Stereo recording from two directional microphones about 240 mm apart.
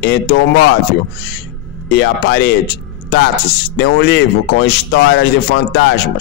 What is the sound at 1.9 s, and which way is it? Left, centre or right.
Speech, left.